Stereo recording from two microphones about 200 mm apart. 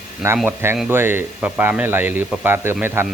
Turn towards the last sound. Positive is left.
turn(degrees=-10)  # may be behind; listen again after turning